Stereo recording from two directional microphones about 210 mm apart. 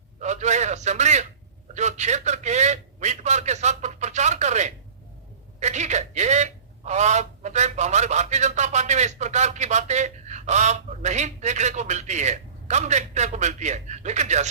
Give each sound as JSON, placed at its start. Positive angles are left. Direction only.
{"t": 0.2, "sound": "a man's voice", "side_deg": -35}